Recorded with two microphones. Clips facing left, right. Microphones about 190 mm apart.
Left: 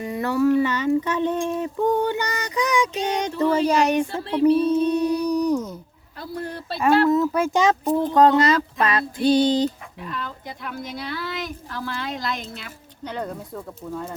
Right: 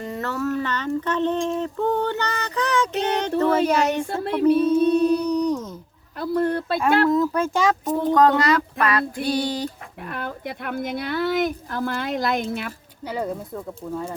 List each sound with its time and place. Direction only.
0.0 s a sound: 10° left (ahead or behind)
6.1 s speech: 55° right (ahead or behind)
6.8 s a sound: 5° left (ahead or behind)
7.6 s child singing: 25° left (ahead or behind)
10.0 s speech: 60° right (ahead or behind)
13.1 s speech: 5° right (ahead or behind)